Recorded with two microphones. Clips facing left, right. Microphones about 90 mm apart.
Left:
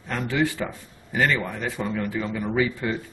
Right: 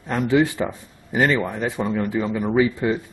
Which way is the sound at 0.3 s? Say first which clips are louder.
Right 6 dB; 20° right (ahead or behind).